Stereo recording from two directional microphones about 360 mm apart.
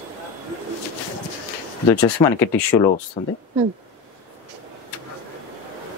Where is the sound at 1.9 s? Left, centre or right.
Centre.